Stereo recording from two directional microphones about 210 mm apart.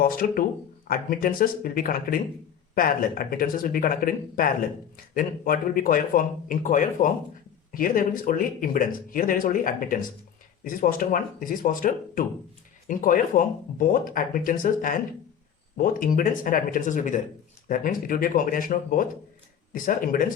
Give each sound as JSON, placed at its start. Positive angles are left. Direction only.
{"t": 0.0, "sound": "speech", "side_deg": 45}